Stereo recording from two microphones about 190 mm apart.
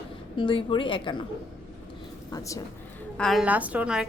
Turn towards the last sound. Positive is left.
turn(degrees=-5)  # may be behind; listen again after turning